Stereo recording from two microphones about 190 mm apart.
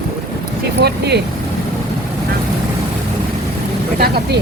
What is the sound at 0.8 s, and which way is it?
Vehicle, 60° right (ahead or behind).